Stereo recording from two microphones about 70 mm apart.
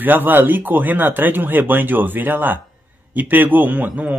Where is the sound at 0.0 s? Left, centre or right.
Right.